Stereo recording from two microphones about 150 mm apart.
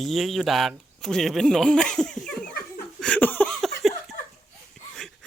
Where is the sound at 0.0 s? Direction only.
Centre (ahead or behind).